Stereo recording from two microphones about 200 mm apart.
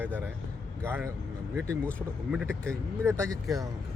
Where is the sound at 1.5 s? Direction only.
15° right (ahead or behind).